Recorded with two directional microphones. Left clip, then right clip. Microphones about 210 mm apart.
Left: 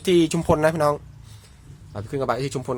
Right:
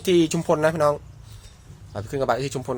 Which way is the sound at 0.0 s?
10° left (ahead or behind).